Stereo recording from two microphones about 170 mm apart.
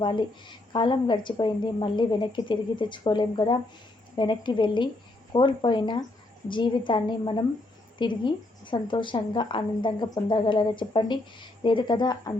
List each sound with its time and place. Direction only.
0.0 s a woman's voice: 25° left (ahead or behind)